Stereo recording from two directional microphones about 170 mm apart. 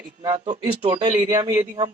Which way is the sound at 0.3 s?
25° right (ahead or behind).